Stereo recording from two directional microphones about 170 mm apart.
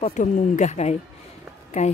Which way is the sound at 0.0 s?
45° left (ahead or behind).